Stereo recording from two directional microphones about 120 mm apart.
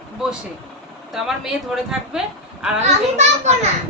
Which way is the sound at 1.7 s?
5° right (ahead or behind).